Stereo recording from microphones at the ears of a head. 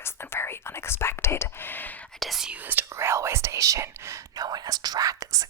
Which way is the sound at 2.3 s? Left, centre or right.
Right.